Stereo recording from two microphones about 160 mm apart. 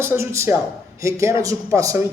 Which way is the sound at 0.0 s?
15° right (ahead or behind).